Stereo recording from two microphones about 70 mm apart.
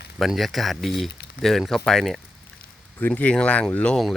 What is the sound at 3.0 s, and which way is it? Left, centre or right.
Speech, left.